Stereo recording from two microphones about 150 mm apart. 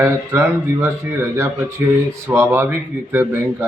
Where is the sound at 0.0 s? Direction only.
15° right (ahead or behind).